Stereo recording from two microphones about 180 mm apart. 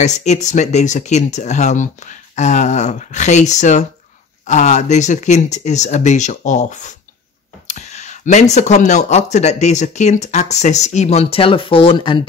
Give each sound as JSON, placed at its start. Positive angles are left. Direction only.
{"t": 0.0, "sound": "speech", "side_deg": 40}